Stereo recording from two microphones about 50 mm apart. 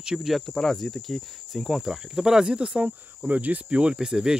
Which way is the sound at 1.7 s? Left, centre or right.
Centre.